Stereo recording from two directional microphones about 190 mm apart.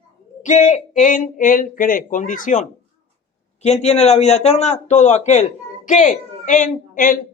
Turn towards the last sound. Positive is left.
turn(degrees=45)  # may be behind; listen again after turning